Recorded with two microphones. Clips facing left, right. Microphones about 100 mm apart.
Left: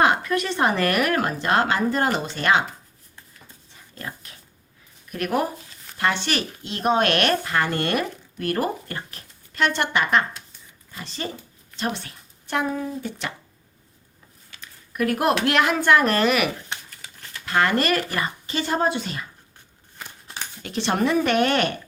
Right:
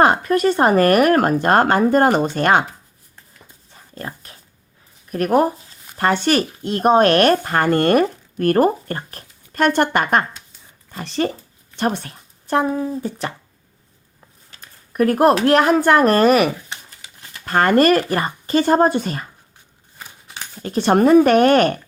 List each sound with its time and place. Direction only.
0.0 s speech: 40° right (ahead or behind)
3.7 s dog: 40° right (ahead or behind)
5.1 s speech: 40° right (ahead or behind)
11.0 s speech: 60° right (ahead or behind)
11.8 s speech: 45° right (ahead or behind)
14.5 s speech: 40° right (ahead or behind)
20.6 s speech: 40° right (ahead or behind)